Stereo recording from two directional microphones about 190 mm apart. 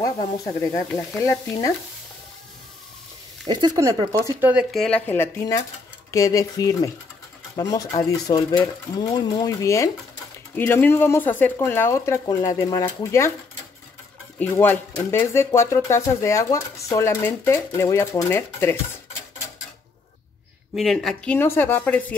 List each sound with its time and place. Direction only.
0.0 s speech: 15° left (ahead or behind)
3.4 s speech: 20° right (ahead or behind)
4.8 s speech: 10° left (ahead or behind)
14.4 s speech: 10° left (ahead or behind)
20.7 s speech: centre (ahead or behind)